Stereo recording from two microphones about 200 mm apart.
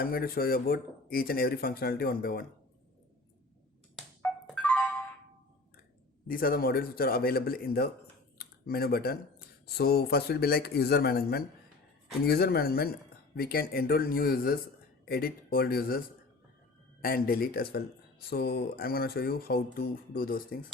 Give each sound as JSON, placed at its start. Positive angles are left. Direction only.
{"t": 0.0, "sound": "speech", "side_deg": 45}
{"t": 3.9, "sound": "music", "side_deg": 0}
{"t": 6.2, "sound": "speech", "side_deg": 45}
{"t": 8.4, "sound": "a sound", "side_deg": 50}
{"t": 9.6, "sound": "speech", "side_deg": 50}
{"t": 17.0, "sound": "speech", "side_deg": 50}